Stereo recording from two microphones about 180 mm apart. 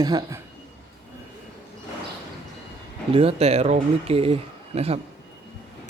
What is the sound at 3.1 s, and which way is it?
Speech, 35° right (ahead or behind).